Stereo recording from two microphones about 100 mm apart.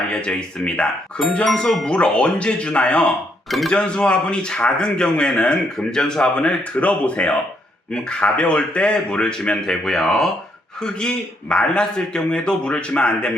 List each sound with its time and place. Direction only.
0.1 s speech: 10° left (ahead or behind)